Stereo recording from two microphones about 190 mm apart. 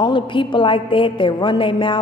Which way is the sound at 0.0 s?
25° left (ahead or behind).